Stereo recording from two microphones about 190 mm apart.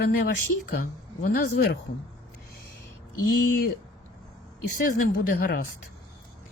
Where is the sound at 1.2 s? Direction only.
50° left (ahead or behind).